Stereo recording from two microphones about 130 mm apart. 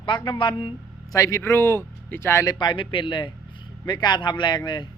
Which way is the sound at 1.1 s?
25° left (ahead or behind).